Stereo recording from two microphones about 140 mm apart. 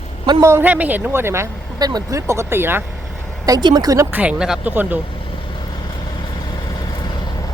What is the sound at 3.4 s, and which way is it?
Speech, 30° right (ahead or behind).